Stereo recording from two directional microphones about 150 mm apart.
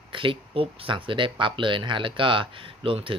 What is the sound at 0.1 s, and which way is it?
Speech, 35° right (ahead or behind).